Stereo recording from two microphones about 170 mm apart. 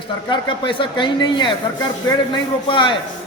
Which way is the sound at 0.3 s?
30° left (ahead or behind).